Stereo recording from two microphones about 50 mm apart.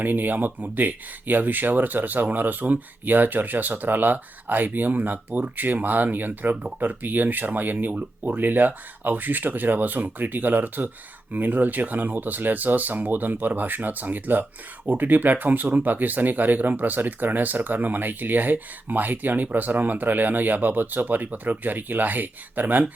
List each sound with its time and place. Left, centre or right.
0.0 s speech: right